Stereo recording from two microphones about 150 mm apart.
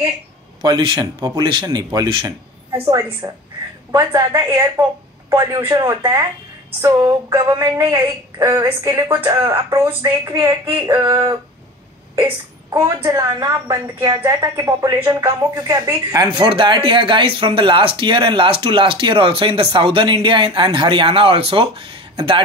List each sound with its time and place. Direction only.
0.6 s a woman's voice: 30° right (ahead or behind); by 4.8 s 15° right (ahead or behind)
5.3 s a woman's voice: 25° right (ahead or behind)
11.0 s a woman's voice: 30° right (ahead or behind)
12.7 s a woman's voice: 20° right (ahead or behind)
16.3 s speech: 35° right (ahead or behind)